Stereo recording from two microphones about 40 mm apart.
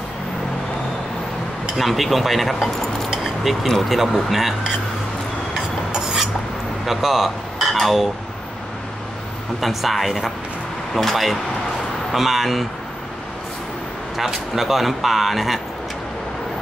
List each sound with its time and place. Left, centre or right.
1.8 s speech: centre
3.1 s keys jangling: centre
3.6 s speech: centre
5.9 s a sound: centre
6.9 s speech: centre
9.6 s speech: centre
14.3 s speech: centre